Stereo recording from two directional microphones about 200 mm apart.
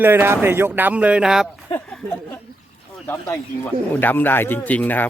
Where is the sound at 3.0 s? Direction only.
10° left (ahead or behind).